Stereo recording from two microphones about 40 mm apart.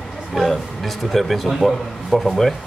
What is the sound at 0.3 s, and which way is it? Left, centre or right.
A man's voice, centre.